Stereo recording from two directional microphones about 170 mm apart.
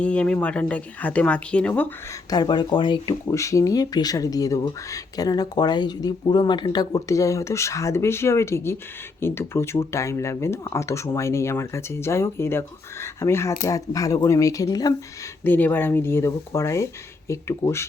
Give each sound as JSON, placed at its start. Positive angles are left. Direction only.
{"t": 0.0, "sound": "speech", "side_deg": 5}
{"t": 2.3, "sound": "speech", "side_deg": 25}
{"t": 15.4, "sound": "speech", "side_deg": 10}